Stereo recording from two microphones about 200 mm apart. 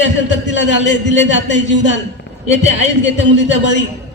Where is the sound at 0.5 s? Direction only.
65° left (ahead or behind).